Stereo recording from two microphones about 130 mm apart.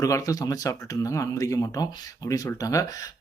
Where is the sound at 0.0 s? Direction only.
25° left (ahead or behind).